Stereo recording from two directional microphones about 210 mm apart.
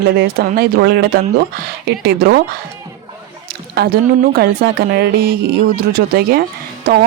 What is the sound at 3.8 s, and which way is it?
Speech, 40° right (ahead or behind).